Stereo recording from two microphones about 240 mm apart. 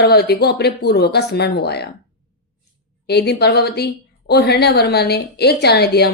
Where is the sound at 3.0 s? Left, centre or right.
Left.